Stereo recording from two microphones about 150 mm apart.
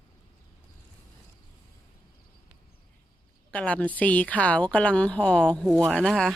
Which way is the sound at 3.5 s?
10° left (ahead or behind).